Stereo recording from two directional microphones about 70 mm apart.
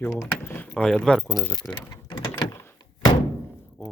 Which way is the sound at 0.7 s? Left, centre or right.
Centre.